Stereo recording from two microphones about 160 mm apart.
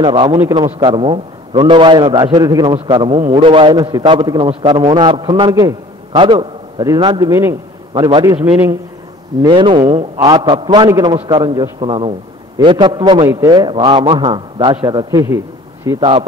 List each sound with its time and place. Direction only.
0.0 s speech: 30° right (ahead or behind)
0.4 s a man's voice: 20° right (ahead or behind)
8.4 s a man's voice: 10° right (ahead or behind)
9.4 s speech: 30° right (ahead or behind)
10.1 s a man's voice: 25° right (ahead or behind)
16.0 s speech: 30° right (ahead or behind)